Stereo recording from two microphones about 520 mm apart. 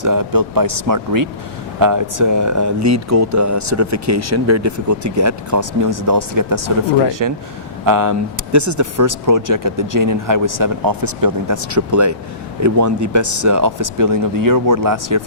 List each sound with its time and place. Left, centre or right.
0.0 s speech: right